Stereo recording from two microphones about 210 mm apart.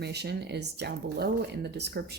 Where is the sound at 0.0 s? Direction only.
50° right (ahead or behind).